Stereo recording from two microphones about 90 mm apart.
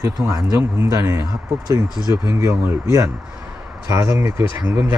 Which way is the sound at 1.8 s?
50° left (ahead or behind).